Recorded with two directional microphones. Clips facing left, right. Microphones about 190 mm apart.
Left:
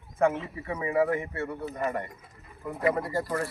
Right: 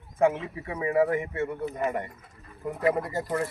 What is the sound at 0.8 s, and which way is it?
Speech, 15° right (ahead or behind).